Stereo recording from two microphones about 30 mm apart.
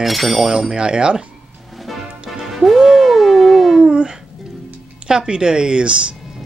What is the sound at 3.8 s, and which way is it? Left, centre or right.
Dog, right.